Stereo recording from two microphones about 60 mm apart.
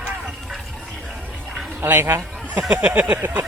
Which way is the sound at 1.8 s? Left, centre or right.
Right.